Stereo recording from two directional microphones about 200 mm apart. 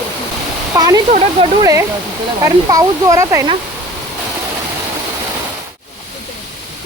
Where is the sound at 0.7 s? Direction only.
20° right (ahead or behind).